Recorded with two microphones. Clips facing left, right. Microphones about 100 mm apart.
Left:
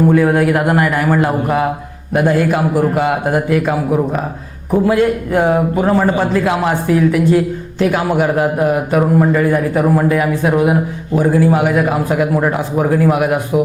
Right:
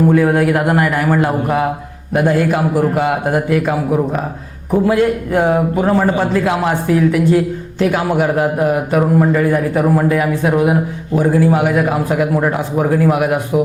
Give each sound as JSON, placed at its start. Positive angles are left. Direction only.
{"t": 0.0, "sound": "a man's voice", "side_deg": 25}